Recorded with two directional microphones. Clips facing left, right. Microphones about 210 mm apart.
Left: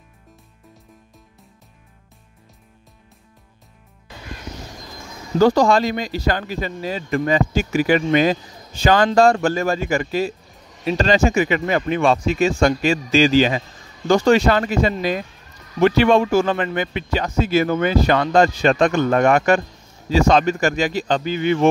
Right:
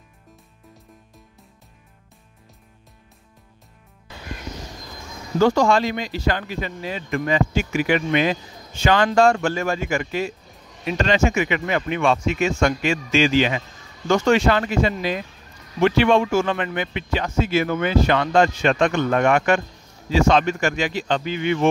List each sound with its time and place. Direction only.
5.4 s speech: 35° left (ahead or behind)